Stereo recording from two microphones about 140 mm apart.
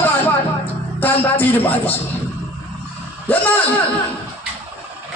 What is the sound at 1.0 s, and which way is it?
Music, 15° left (ahead or behind).